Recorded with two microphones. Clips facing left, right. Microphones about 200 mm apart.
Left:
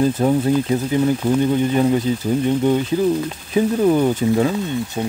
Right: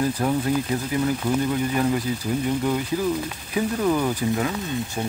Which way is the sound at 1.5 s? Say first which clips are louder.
Left 6 dB; 20° left (ahead or behind).